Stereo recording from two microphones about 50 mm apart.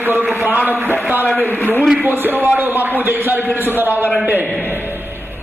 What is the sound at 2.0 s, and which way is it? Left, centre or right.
Speech, right.